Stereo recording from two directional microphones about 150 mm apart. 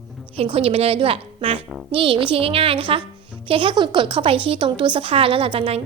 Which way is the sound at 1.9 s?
35° right (ahead or behind).